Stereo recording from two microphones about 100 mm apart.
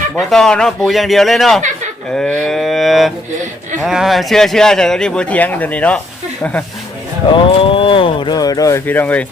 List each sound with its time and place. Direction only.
0.2 s speech: 5° left (ahead or behind)
2.1 s cattle: 10° left (ahead or behind)
3.8 s a man's voice: 5° right (ahead or behind); by 6.7 s 15° left (ahead or behind)
7.3 s speech: 60° left (ahead or behind)
8.4 s speech: 40° left (ahead or behind)
8.9 s a man's voice: 15° left (ahead or behind)